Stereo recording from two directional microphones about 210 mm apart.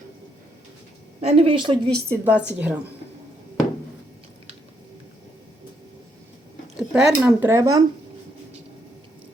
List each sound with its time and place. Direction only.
1.2 s a woman's voice: 30° right (ahead or behind)
2.0 s speech: 10° right (ahead or behind)
6.7 s speech: 5° right (ahead or behind)